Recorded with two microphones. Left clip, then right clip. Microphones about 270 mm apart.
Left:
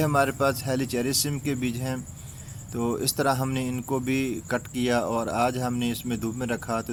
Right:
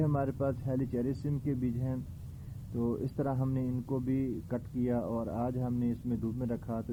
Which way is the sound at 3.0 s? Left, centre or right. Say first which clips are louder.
Left 10 dB; centre.